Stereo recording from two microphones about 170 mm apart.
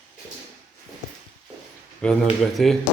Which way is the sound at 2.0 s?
5° left (ahead or behind).